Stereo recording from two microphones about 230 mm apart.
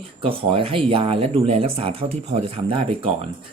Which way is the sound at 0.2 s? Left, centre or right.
Right.